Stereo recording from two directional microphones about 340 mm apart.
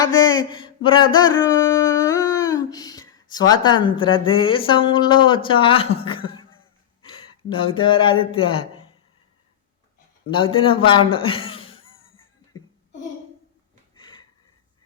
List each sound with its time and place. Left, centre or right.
0.2 s a sound: centre
7.5 s speech: centre
10.2 s a man's voice: centre
11.9 s music: left